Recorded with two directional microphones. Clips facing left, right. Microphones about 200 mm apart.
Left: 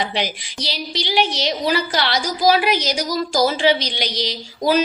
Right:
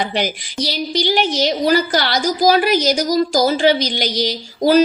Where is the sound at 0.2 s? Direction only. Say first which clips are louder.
Right 4 dB; 45° right (ahead or behind).